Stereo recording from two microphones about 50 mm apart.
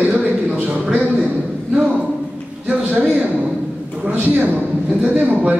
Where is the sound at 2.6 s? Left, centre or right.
Right.